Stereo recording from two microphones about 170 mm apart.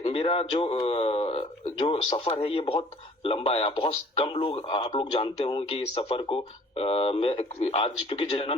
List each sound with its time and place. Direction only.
0.0 s speech: 35° left (ahead or behind)